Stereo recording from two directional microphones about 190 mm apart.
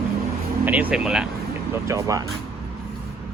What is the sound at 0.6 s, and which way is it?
Speech, 10° right (ahead or behind).